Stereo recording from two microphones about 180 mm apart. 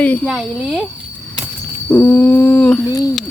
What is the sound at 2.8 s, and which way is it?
Speech, 20° left (ahead or behind).